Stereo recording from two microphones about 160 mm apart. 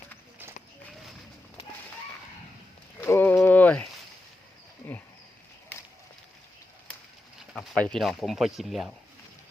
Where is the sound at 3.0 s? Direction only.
15° left (ahead or behind).